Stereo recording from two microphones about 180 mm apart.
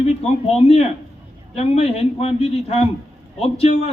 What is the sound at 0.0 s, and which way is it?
Speech, 35° left (ahead or behind).